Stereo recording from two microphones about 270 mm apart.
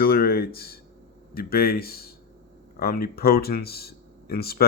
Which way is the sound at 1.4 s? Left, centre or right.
Left.